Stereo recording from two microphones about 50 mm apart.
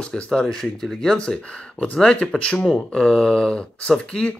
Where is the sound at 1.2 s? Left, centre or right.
Centre.